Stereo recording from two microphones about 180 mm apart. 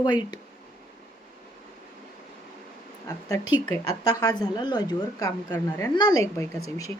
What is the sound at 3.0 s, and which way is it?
A woman's voice, 20° left (ahead or behind).